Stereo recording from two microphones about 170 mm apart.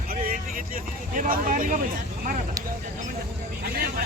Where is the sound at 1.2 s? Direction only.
55° right (ahead or behind).